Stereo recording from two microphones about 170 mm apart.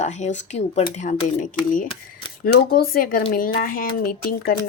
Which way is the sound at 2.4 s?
60° left (ahead or behind).